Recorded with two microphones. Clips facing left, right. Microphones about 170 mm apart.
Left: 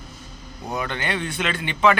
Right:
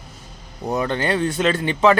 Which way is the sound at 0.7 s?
35° right (ahead or behind).